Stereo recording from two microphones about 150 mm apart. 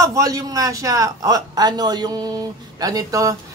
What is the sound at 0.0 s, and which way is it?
Speech, 25° right (ahead or behind).